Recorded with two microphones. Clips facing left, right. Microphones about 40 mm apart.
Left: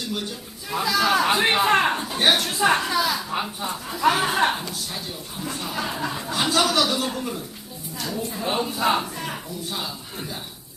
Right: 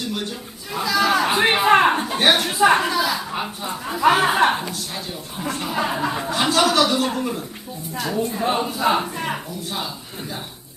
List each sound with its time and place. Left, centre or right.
0.7 s chatter: centre
1.4 s a sound: centre
3.8 s speech: centre
4.4 s a man's voice: centre
4.6 s a man's voice: right
8.4 s a man's voice: centre
8.7 s speech: centre
9.0 s speech: right
9.7 s a man's voice: centre